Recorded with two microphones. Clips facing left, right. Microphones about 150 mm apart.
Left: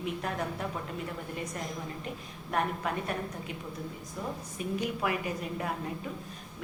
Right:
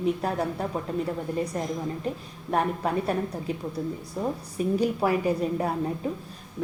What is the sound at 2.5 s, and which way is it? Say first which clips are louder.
A woman's voice: right 6 dB; 35° right (ahead or behind).